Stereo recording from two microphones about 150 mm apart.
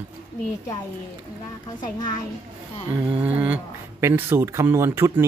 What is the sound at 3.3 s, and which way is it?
Speech, 10° right (ahead or behind).